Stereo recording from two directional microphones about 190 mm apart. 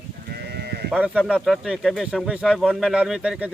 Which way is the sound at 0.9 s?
5° right (ahead or behind).